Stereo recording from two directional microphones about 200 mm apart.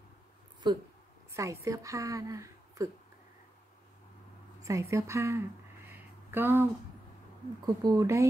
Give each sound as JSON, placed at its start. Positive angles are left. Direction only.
{"t": 1.3, "sound": "a woman's voice", "side_deg": -15}
{"t": 4.6, "sound": "a woman's voice", "side_deg": -15}
{"t": 5.9, "sound": "a sound", "side_deg": -10}
{"t": 7.6, "sound": "a woman's voice", "side_deg": -20}